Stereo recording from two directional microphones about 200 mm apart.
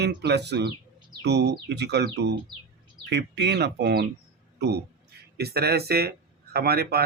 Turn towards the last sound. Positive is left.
turn(degrees=-50)  # may be behind; listen again after turning